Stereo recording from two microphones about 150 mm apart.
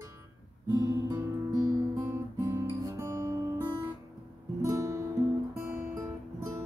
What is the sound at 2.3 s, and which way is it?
Guitar, 20° right (ahead or behind).